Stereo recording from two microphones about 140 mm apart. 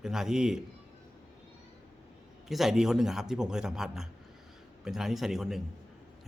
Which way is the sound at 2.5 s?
5° right (ahead or behind).